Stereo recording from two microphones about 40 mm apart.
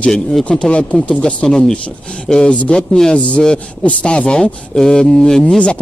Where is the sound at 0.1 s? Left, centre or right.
Centre.